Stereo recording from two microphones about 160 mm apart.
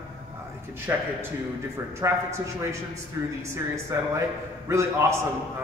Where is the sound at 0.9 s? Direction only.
15° right (ahead or behind).